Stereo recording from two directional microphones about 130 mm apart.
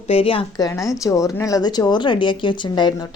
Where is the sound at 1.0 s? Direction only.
25° left (ahead or behind).